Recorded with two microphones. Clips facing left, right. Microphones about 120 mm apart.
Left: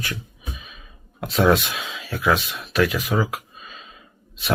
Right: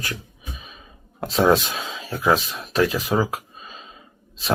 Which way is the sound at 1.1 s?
35° right (ahead or behind).